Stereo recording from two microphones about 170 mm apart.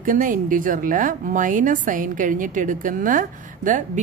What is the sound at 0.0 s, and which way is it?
A woman's voice, 50° right (ahead or behind).